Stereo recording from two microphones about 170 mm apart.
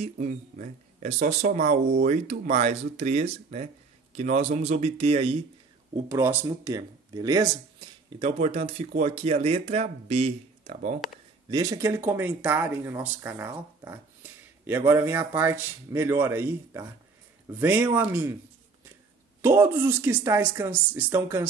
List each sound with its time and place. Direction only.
0.0 s speech: 50° right (ahead or behind); by 5.4 s 35° right (ahead or behind)
6.0 s speech: 15° right (ahead or behind)
8.3 s speech: 40° right (ahead or behind)
11.5 s speech: 20° right (ahead or behind)
19.8 s speech: 15° right (ahead or behind)